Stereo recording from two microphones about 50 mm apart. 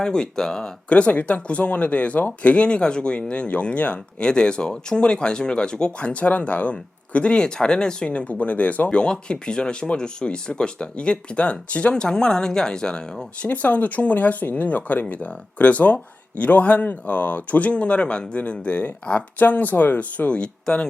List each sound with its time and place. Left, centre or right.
0.0 s speech: centre
0.9 s speech: left
9.0 s speech: centre
13.5 s speech: left